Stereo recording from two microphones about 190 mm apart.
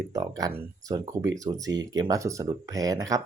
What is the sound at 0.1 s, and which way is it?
Speech, 20° right (ahead or behind).